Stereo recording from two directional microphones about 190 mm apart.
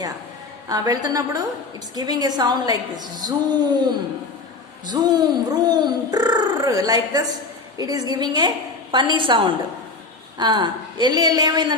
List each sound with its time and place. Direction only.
0.7 s speech: 20° right (ahead or behind)